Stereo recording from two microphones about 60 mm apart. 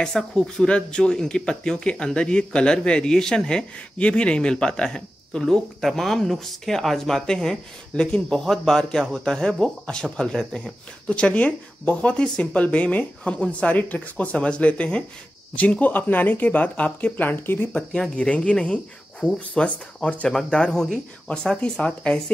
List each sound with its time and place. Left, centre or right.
0.0 s speech: centre; by 17.6 s left
17.7 s speech: centre